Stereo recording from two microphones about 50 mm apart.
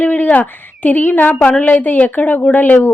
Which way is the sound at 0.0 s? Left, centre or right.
Left.